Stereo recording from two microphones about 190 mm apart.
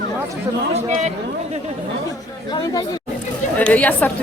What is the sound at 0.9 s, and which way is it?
Speech, 40° right (ahead or behind).